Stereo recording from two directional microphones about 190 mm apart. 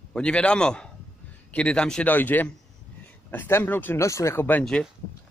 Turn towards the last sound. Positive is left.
turn(degrees=5)  # may be behind; listen again after turning